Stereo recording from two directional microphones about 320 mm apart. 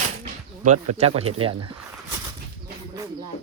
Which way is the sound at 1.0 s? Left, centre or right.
Centre.